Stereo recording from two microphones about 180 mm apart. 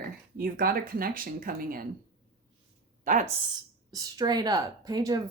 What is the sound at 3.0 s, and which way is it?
Speech, 45° right (ahead or behind).